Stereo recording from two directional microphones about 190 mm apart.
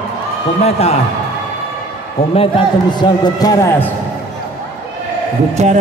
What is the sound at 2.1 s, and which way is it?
A man's voice, 30° left (ahead or behind).